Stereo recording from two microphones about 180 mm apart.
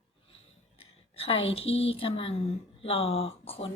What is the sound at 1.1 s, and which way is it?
A woman's voice, 30° left (ahead or behind).